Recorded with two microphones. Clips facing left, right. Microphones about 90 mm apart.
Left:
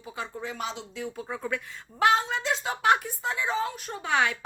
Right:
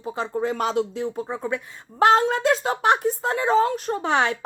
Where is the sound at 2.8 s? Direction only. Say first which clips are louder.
Even; 30° right (ahead or behind).